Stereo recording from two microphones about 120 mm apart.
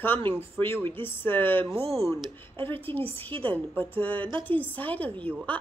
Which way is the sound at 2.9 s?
20° left (ahead or behind).